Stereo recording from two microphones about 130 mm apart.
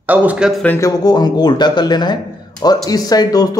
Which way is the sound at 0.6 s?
15° left (ahead or behind).